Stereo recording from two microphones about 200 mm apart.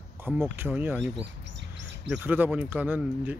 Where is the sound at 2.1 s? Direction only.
10° right (ahead or behind).